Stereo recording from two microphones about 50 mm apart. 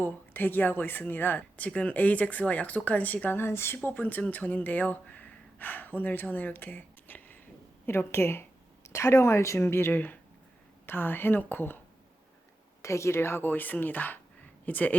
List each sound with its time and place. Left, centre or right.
0.0 s speech: left
1.5 s speech: left
3.3 s speech: left
3.9 s speech: left
7.9 s speech: left
8.9 s a woman's voice: left
9.6 s speech: left
9.9 s a woman's voice: left
12.8 s speech: left